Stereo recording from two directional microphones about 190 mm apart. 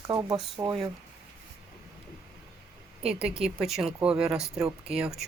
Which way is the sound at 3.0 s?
5° right (ahead or behind).